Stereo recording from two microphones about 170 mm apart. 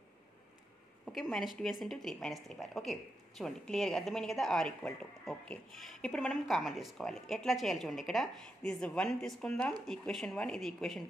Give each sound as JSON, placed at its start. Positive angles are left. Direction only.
{"t": 1.0, "sound": "a woman's voice", "side_deg": 0}